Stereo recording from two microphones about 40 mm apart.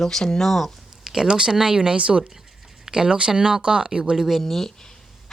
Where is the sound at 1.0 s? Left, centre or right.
Centre.